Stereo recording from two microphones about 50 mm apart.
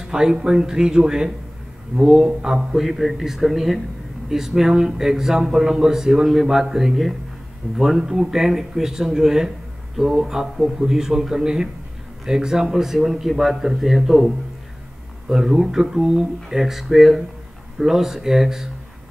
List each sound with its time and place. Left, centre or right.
0.0 s speech: centre
2.8 s speech: centre